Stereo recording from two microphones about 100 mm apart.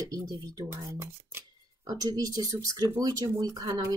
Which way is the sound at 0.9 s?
25° right (ahead or behind).